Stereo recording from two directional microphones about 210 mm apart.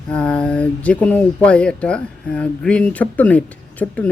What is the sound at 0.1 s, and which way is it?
Speech, 5° left (ahead or behind).